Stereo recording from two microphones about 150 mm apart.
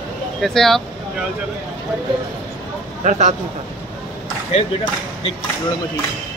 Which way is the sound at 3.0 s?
50° right (ahead or behind).